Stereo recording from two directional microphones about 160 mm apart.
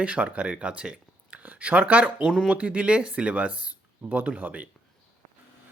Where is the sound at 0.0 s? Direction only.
10° right (ahead or behind).